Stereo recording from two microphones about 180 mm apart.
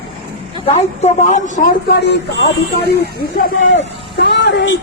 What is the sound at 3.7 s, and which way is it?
Speech, 75° left (ahead or behind).